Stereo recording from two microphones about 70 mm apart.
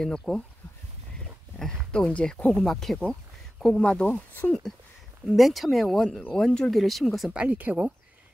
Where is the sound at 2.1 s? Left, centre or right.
Centre.